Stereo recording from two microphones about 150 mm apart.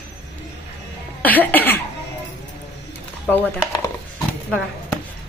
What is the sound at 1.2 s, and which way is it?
Speech, 10° left (ahead or behind).